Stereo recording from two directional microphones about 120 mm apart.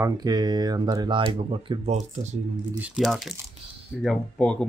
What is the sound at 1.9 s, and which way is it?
Speech, 70° right (ahead or behind).